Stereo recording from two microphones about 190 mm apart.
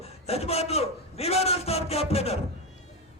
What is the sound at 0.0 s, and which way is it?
A man's voice, 30° left (ahead or behind).